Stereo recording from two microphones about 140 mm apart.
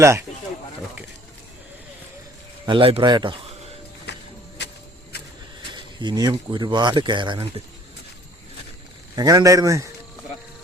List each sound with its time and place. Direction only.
2.6 s speech: 40° right (ahead or behind)
5.6 s speech: 30° right (ahead or behind)
9.1 s a man's voice: 25° right (ahead or behind)